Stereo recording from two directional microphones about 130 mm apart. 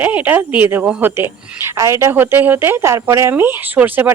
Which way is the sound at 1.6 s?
25° right (ahead or behind).